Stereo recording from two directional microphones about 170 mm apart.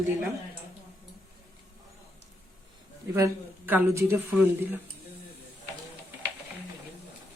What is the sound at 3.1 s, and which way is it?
Speech, 15° right (ahead or behind).